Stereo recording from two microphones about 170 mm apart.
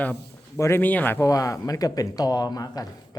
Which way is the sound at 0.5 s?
15° left (ahead or behind).